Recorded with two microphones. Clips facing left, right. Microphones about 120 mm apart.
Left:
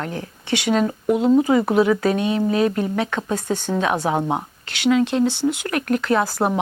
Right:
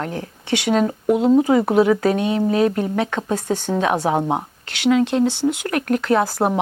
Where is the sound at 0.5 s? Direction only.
60° right (ahead or behind).